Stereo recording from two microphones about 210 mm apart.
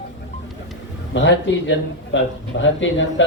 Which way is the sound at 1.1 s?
60° left (ahead or behind).